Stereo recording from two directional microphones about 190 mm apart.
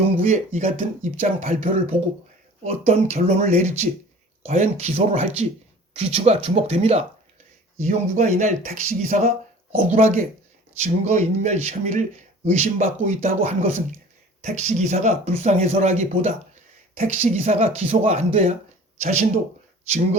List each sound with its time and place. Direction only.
0.2 s speech: 40° right (ahead or behind)